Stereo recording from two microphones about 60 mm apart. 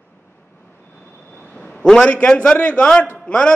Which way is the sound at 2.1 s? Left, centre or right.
Left.